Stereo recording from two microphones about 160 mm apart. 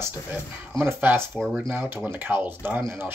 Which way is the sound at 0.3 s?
15° right (ahead or behind).